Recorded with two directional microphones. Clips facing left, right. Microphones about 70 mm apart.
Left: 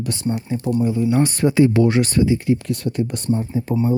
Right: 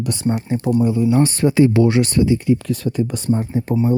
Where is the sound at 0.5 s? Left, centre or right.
Right.